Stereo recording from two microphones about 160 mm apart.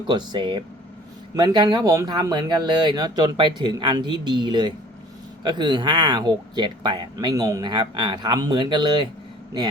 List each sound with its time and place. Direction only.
0.1 s speech: 30° right (ahead or behind)